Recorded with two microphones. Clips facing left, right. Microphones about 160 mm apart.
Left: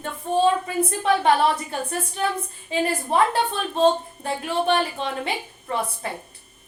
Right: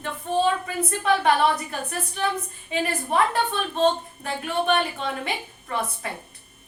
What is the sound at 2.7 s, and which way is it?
A woman's voice, 30° left (ahead or behind).